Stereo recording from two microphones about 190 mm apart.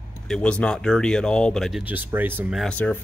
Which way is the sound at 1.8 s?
10° right (ahead or behind).